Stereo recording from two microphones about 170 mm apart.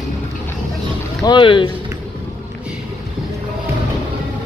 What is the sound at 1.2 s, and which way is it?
Speech, 30° left (ahead or behind).